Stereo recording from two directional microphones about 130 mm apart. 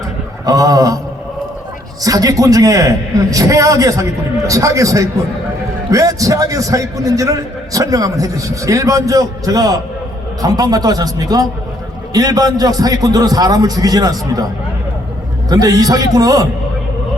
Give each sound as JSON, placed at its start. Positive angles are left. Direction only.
{"t": 0.4, "sound": "a man's voice", "side_deg": -30}
{"t": 2.0, "sound": "a man's voice", "side_deg": -30}
{"t": 15.4, "sound": "a man's voice", "side_deg": -30}